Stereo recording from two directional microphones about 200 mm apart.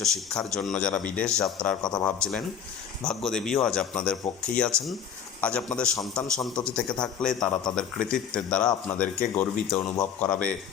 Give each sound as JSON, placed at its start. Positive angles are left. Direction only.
{"t": 0.0, "sound": "a man's voice", "side_deg": 0}
{"t": 1.9, "sound": "speech", "side_deg": 15}
{"t": 2.1, "sound": "a man's voice", "side_deg": 5}